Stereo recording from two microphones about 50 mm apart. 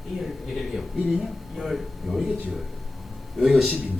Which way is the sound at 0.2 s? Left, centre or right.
Centre.